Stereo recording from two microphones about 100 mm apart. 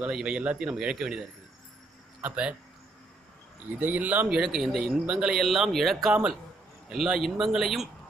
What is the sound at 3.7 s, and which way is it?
Speech, 20° right (ahead or behind).